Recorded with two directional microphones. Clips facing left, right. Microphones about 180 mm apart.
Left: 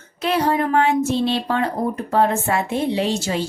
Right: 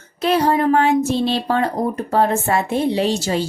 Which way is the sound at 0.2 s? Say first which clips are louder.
Right 3 dB; 35° right (ahead or behind).